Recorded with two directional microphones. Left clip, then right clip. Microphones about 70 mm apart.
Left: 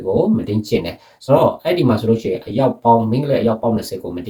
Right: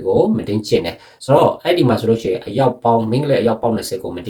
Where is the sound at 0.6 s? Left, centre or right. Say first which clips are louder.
Right 3 dB; right.